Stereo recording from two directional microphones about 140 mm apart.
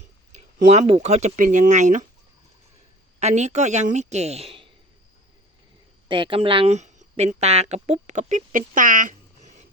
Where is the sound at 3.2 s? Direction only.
55° right (ahead or behind).